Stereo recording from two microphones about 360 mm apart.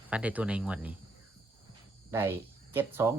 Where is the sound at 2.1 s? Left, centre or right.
Centre.